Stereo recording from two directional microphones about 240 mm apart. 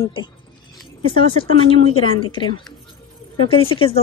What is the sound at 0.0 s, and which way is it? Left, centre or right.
Speech, centre.